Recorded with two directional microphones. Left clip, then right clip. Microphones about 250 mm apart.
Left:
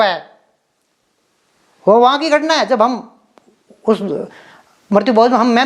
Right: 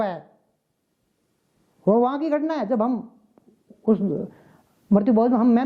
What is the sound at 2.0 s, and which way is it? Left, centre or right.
A man's voice, centre.